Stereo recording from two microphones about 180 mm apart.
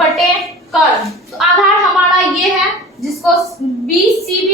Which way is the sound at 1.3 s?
Centre (ahead or behind).